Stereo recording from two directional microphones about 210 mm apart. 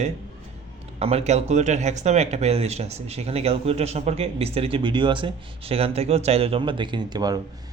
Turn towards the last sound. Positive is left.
turn(degrees=-20)  # may be behind; listen again after turning